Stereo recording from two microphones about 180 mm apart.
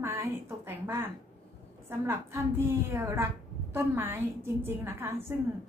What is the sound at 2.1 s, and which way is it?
A woman's voice, 10° right (ahead or behind).